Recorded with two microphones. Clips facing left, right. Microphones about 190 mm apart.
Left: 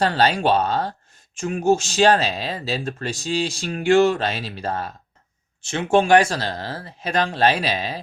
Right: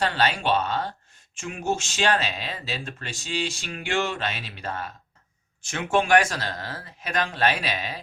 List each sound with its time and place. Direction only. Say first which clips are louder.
0.0 s speech: left 5 dB; 35° left (ahead or behind)